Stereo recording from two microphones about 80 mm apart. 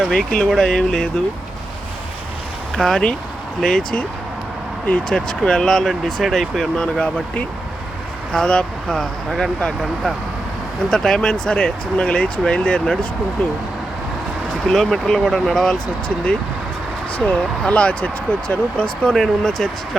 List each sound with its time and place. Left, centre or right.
0.1 s speech: centre
2.7 s speech: centre
8.3 s speech: centre
9.8 s speech: centre
14.7 s speech: centre